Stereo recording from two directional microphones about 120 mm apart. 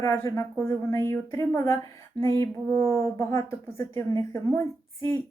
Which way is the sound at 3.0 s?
25° left (ahead or behind).